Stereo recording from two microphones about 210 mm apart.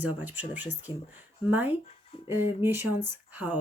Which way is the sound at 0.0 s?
10° right (ahead or behind).